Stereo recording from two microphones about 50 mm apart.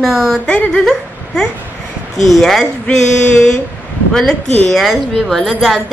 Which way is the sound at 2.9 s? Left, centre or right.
Centre.